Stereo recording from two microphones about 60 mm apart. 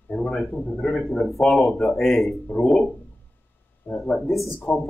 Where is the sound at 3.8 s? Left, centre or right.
Left.